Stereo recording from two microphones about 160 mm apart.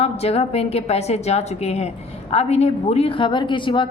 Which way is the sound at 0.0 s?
40° left (ahead or behind).